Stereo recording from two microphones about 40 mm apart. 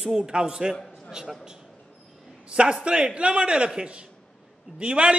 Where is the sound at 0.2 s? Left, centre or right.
Right.